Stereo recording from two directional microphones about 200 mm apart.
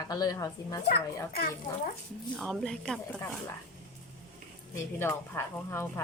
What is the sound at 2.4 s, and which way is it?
Speech, centre (ahead or behind).